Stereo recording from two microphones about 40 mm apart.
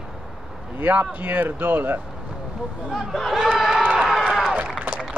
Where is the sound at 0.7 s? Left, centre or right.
Right.